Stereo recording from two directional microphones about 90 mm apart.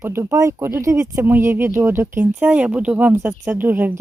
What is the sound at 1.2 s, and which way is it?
Speech, 25° right (ahead or behind).